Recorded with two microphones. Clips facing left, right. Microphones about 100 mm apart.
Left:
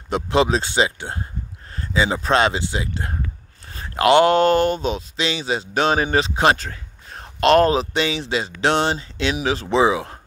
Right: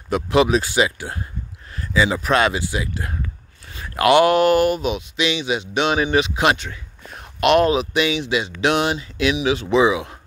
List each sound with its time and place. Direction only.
0.1 s speech: 30° left (ahead or behind)